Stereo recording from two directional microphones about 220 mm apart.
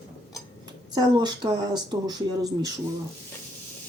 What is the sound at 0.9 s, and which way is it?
Speech, 20° right (ahead or behind).